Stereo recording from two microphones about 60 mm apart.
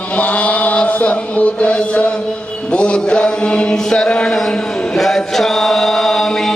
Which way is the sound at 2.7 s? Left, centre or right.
Centre.